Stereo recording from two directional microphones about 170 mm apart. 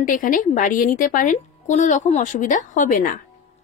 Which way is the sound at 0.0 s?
55° left (ahead or behind).